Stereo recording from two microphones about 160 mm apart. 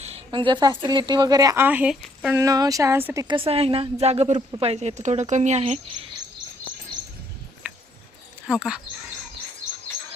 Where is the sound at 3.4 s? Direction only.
40° right (ahead or behind).